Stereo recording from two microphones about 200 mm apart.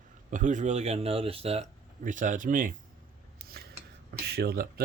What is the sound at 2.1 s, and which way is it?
Speech, 40° right (ahead or behind).